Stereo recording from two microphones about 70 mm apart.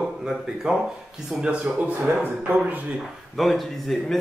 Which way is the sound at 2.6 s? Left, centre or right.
Right.